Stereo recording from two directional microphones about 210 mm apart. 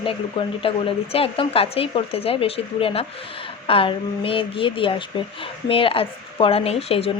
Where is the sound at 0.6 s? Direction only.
25° left (ahead or behind).